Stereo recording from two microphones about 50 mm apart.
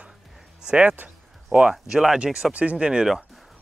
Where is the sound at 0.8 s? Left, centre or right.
Right.